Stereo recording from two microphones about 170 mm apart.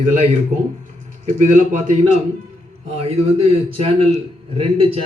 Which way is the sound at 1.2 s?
45° right (ahead or behind).